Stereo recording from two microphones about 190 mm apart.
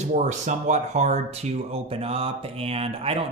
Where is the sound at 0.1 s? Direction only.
40° right (ahead or behind).